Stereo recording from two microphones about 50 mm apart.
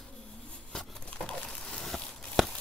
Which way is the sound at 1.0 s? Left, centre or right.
Left.